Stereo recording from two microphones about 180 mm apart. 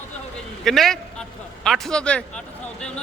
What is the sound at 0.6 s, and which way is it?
Speech, centre (ahead or behind).